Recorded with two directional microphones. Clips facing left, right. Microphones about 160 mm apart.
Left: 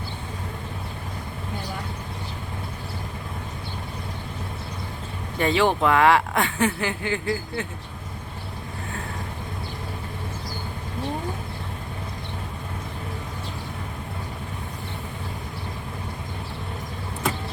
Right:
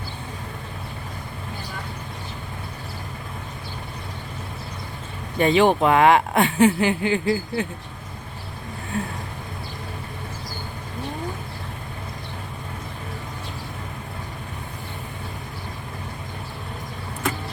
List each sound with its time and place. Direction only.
5.4 s speech: 20° right (ahead or behind)